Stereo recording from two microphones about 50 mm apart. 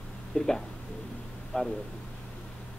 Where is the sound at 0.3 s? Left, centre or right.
Centre.